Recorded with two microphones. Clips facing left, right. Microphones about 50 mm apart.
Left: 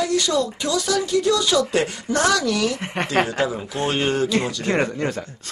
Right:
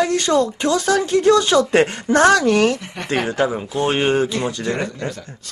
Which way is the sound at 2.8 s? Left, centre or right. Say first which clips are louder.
Left 5 dB; left.